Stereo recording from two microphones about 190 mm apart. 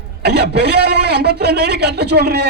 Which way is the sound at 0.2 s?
60° right (ahead or behind).